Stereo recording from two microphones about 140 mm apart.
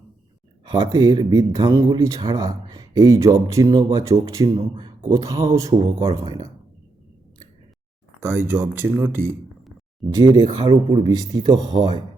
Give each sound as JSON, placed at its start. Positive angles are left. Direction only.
{"t": 0.6, "sound": "speech", "side_deg": -30}
{"t": 4.5, "sound": "a man's voice", "side_deg": -35}
{"t": 5.0, "sound": "speech", "side_deg": -25}
{"t": 8.2, "sound": "speech", "side_deg": -15}
{"t": 10.2, "sound": "speech", "side_deg": -30}